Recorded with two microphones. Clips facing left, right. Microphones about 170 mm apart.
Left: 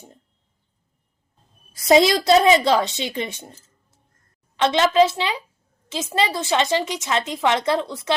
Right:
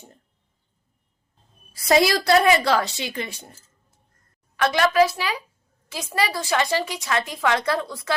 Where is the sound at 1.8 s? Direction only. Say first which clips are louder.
Left 3 dB; 20° left (ahead or behind).